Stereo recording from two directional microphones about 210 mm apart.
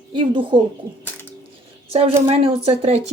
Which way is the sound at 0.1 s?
20° right (ahead or behind).